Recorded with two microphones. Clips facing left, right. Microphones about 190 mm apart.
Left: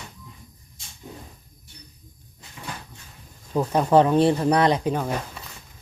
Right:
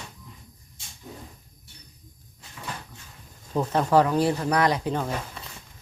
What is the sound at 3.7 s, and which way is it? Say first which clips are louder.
Speech: left 3 dB; 20° left (ahead or behind).